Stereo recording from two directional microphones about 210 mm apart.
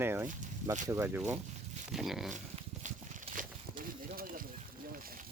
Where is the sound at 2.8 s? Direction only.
40° right (ahead or behind).